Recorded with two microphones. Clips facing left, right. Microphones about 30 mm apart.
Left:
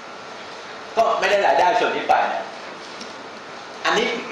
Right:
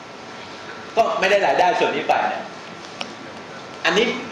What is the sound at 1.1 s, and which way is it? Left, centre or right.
A man's voice, centre.